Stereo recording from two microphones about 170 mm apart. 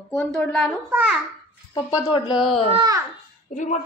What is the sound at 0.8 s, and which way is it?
Speech, 5° right (ahead or behind).